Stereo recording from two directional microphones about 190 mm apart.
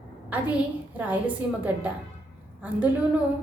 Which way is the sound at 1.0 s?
10° right (ahead or behind).